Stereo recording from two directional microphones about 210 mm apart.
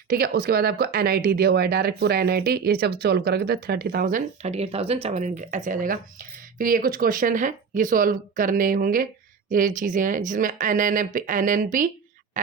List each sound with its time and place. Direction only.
0.1 s speech: 45° right (ahead or behind)